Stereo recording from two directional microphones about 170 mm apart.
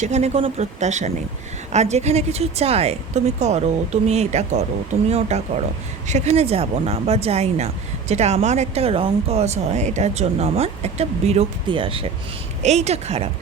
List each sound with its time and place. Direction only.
0.0 s speech: 40° right (ahead or behind)